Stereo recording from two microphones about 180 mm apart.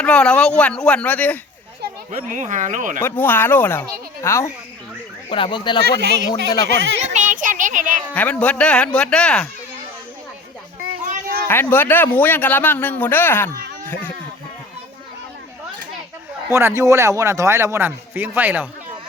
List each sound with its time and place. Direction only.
0.0 s speech: 5° left (ahead or behind)
2.0 s speech: 45° right (ahead or behind)
3.0 s speech: 10° left (ahead or behind)
5.3 s speech: 30° left (ahead or behind)
6.0 s speech: 70° right (ahead or behind)
7.0 s speech: 40° right (ahead or behind)
8.1 s speech: 10° left (ahead or behind)
11.0 s children playing: 50° right (ahead or behind)
11.4 s speech: 10° left (ahead or behind)
16.5 s speech: 15° right (ahead or behind)